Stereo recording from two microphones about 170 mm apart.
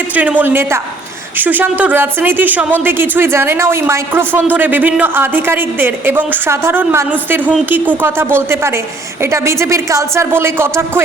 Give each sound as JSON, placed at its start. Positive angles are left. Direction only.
{"t": 0.1, "sound": "speech", "side_deg": -10}